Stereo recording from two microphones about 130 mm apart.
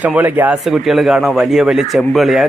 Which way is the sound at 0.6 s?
Centre (ahead or behind).